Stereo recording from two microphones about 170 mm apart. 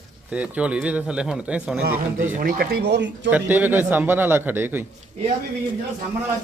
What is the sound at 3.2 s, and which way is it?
A man's voice, 10° right (ahead or behind).